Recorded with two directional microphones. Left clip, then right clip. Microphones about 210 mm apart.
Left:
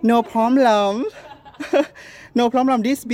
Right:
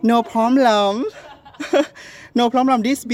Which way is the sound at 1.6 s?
Centre (ahead or behind).